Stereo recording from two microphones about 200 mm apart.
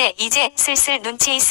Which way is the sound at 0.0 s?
60° left (ahead or behind).